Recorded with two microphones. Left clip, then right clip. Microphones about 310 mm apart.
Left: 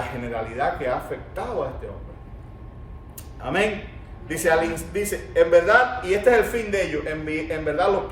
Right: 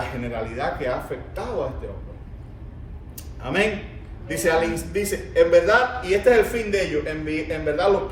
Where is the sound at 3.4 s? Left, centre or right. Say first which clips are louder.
Even; centre.